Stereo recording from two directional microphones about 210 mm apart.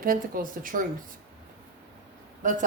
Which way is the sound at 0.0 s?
40° right (ahead or behind).